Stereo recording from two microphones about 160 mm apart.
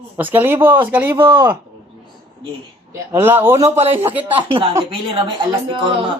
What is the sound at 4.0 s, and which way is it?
Speech, 10° right (ahead or behind).